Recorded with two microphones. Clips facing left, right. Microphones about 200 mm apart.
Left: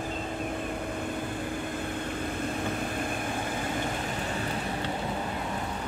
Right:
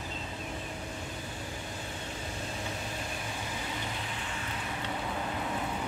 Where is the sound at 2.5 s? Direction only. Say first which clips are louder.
Left 7 dB; 55° left (ahead or behind).